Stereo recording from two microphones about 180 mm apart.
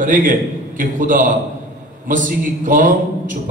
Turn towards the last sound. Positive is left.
turn(degrees=-45)  # may be behind; listen again after turning